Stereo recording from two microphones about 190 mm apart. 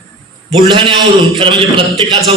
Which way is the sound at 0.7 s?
25° right (ahead or behind).